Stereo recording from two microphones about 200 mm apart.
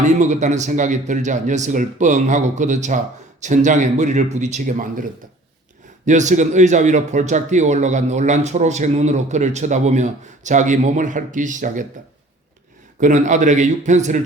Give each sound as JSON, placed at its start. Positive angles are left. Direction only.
{"t": 0.0, "sound": "speech", "side_deg": -35}
{"t": 6.1, "sound": "speech", "side_deg": -35}
{"t": 13.0, "sound": "speech", "side_deg": -40}